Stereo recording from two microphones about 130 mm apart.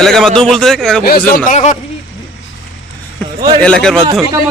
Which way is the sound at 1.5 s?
70° left (ahead or behind).